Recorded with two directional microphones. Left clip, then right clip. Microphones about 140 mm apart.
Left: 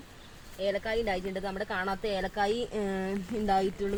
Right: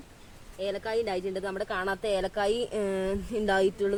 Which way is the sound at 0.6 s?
45° right (ahead or behind).